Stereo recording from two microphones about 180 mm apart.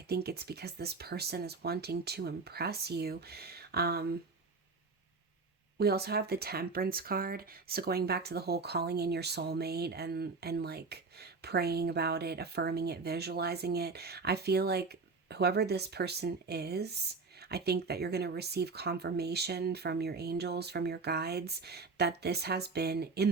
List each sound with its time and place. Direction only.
0.1 s speech: 60° right (ahead or behind)
5.8 s speech: 60° right (ahead or behind)